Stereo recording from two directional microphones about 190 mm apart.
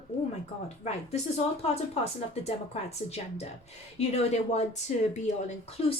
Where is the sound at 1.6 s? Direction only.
35° left (ahead or behind).